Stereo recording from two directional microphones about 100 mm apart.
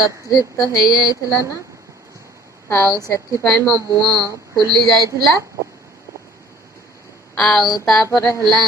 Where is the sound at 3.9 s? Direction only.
40° right (ahead or behind).